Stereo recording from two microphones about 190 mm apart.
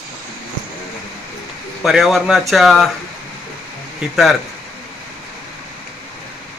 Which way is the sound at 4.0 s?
Centre (ahead or behind).